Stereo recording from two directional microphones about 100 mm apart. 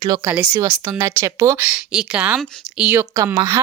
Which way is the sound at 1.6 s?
10° right (ahead or behind).